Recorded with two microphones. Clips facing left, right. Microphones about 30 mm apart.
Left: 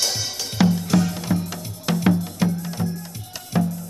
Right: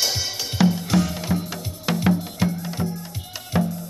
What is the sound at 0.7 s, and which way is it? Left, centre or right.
Music, centre.